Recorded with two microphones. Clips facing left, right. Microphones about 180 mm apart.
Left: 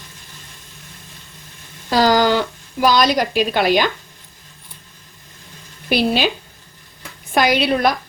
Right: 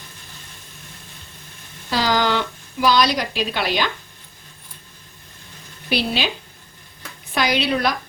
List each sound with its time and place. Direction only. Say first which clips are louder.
1.9 s a woman's voice: left 5 dB; 45° left (ahead or behind)
5.9 s a woman's voice: left 5 dB; 50° left (ahead or behind)
7.3 s a woman's voice: left 4 dB; 50° left (ahead or behind)